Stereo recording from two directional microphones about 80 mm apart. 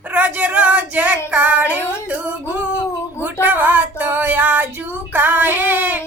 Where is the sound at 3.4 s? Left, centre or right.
Right.